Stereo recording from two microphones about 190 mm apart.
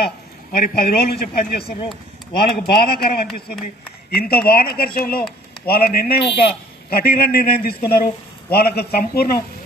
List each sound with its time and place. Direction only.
0.5 s a man's voice: 50° left (ahead or behind)